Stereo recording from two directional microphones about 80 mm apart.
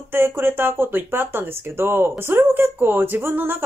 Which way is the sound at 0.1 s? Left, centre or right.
Right.